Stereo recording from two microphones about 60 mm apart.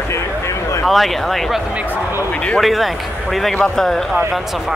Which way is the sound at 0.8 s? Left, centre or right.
Centre.